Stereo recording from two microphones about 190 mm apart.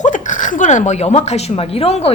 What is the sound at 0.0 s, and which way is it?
Speech, 40° left (ahead or behind).